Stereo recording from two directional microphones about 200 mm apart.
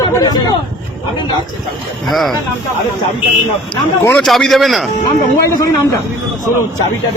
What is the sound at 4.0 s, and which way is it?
Speech, 5° left (ahead or behind).